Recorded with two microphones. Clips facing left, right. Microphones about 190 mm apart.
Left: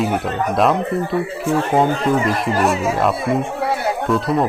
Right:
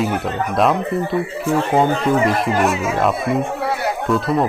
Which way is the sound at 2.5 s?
35° left (ahead or behind).